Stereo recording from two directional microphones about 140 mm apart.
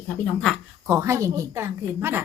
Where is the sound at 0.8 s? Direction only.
20° right (ahead or behind).